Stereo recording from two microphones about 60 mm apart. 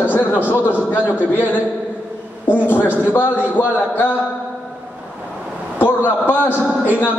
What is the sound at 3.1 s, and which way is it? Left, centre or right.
A man's voice, left.